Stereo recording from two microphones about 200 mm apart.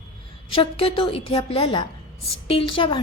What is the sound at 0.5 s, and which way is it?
A woman's voice, 25° left (ahead or behind).